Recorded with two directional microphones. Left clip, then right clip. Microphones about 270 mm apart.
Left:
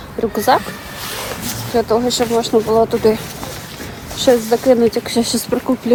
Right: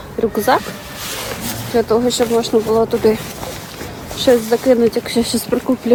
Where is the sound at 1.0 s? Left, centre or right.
Centre.